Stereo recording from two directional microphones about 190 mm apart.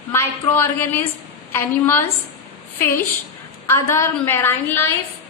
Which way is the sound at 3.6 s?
15° left (ahead or behind).